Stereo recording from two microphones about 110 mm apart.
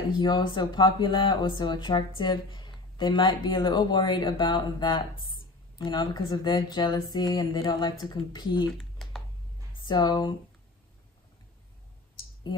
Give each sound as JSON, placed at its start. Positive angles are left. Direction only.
{"t": 0.2, "sound": "speech", "side_deg": 45}
{"t": 8.6, "sound": "computer keyboard", "side_deg": 0}
{"t": 9.8, "sound": "speech", "side_deg": 40}